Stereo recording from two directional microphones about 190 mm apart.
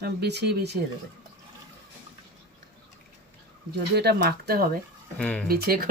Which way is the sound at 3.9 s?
55° right (ahead or behind).